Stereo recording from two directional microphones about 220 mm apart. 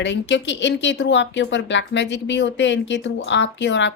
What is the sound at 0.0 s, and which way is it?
Speech, 55° left (ahead or behind).